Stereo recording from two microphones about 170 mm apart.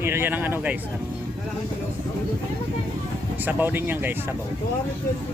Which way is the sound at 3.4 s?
10° right (ahead or behind).